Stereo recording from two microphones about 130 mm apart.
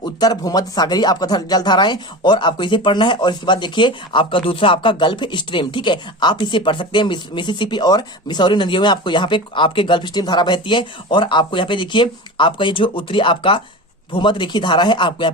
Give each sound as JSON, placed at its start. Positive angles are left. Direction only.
{"t": 0.0, "sound": "speech", "side_deg": 30}